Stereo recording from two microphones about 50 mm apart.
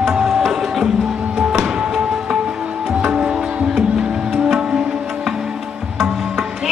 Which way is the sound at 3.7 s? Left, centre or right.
Centre.